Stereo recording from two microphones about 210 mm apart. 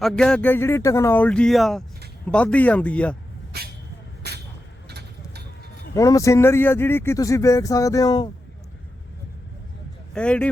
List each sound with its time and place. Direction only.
0.0 s speech: 5° left (ahead or behind)
3.5 s speech: 50° right (ahead or behind)
4.2 s vehicle: 50° right (ahead or behind)
5.9 s speech: 15° left (ahead or behind)
10.2 s speech: 5° left (ahead or behind)